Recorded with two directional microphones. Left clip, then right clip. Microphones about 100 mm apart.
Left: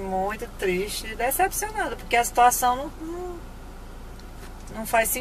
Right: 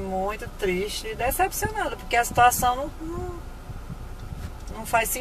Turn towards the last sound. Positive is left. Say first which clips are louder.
# left 1 dB
turn(degrees=0)  # may be behind; listen again after turning